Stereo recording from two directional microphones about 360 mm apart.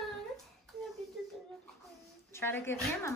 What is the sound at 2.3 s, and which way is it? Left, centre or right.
Speech, centre.